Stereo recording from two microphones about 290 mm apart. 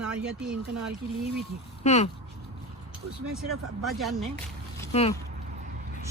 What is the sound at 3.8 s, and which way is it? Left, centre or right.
Speech, centre.